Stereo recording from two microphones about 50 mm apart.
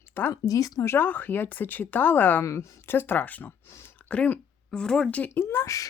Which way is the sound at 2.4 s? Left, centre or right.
Left.